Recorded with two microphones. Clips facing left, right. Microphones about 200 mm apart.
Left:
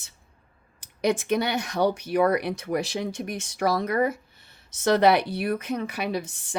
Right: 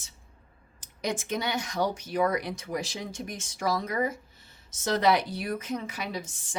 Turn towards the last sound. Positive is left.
turn(degrees=65)  # may be behind; listen again after turning